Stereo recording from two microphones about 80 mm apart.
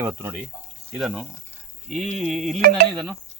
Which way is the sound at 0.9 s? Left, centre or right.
Centre.